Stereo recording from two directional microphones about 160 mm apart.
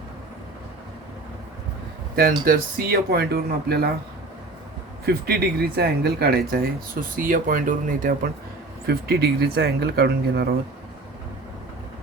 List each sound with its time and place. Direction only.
2.4 s speech: 60° right (ahead or behind)
5.0 s speech: 80° right; by 8.3 s 60° right (ahead or behind)
8.9 s speech: 80° right